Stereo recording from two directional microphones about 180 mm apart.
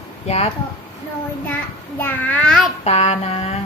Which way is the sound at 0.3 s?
35° left (ahead or behind).